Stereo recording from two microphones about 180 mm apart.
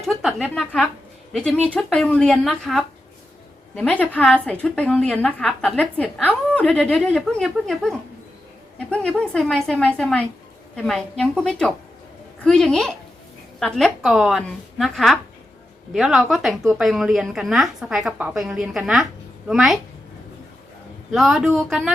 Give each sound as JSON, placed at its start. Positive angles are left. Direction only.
{"t": 0.0, "sound": "a woman's voice", "side_deg": 0}
{"t": 21.1, "sound": "a woman's voice", "side_deg": 0}